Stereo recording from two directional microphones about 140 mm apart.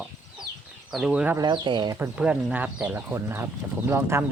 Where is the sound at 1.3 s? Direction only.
30° right (ahead or behind).